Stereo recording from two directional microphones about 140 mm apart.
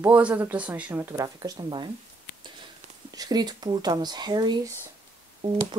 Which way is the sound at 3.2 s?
30° right (ahead or behind).